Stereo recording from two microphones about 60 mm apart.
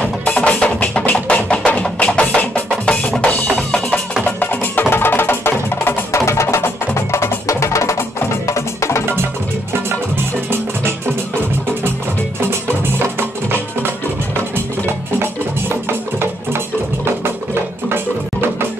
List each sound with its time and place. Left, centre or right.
0.0 s music: left
4.2 s music: left
10.5 s music: right
12.4 s music: right
15.9 s music: right